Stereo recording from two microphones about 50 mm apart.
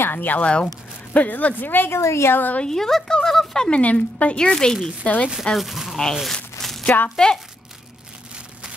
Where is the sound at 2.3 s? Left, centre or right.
Left.